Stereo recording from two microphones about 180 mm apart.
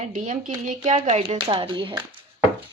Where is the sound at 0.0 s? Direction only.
45° right (ahead or behind); by 2.2 s 30° right (ahead or behind).